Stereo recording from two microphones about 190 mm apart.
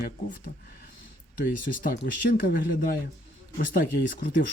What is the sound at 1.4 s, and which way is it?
Speech, 50° left (ahead or behind).